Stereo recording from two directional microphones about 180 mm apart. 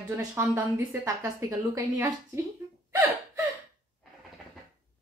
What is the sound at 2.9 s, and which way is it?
Gasp, 15° right (ahead or behind).